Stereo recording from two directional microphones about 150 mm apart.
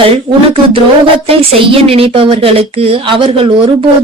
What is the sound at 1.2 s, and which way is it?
Speech, 40° right (ahead or behind).